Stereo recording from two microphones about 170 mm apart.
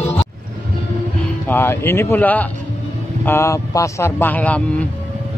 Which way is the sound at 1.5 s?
15° left (ahead or behind).